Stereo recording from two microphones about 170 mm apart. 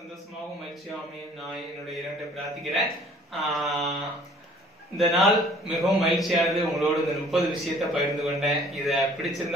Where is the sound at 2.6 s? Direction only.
Centre (ahead or behind).